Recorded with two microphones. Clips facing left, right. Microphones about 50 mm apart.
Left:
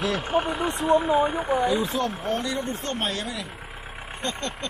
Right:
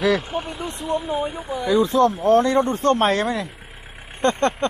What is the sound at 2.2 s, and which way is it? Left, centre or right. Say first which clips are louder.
Speech: right 11 dB; right.